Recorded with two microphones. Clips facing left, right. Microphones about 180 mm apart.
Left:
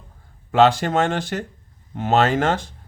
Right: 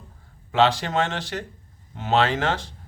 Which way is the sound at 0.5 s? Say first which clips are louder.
Left 4 dB; 50° left (ahead or behind).